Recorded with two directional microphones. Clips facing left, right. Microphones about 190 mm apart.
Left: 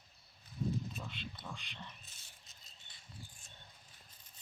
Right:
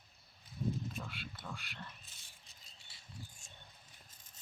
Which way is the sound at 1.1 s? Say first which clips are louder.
Left 1 dB; 5° right (ahead or behind).